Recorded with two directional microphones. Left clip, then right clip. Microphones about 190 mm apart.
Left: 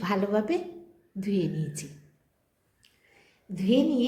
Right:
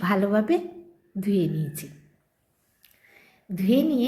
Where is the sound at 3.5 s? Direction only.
20° right (ahead or behind).